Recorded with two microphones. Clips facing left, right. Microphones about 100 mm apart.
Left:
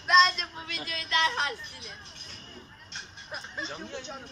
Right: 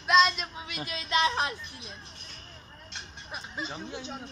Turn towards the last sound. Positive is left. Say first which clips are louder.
# right 1 dB
turn(degrees=-10)  # may be behind; listen again after turning